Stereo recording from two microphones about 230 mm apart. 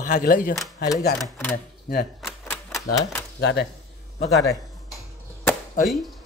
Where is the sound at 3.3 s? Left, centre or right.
Left.